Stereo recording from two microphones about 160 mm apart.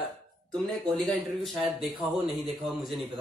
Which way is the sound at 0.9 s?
Centre (ahead or behind).